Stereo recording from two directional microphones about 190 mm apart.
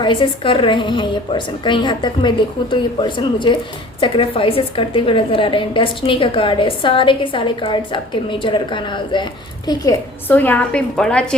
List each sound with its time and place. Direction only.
0.0 s a woman's voice: 25° left (ahead or behind); by 11.3 s 5° left (ahead or behind)